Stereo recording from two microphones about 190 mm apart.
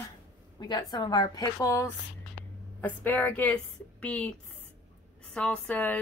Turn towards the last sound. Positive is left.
turn(degrees=5)  # may be behind; listen again after turning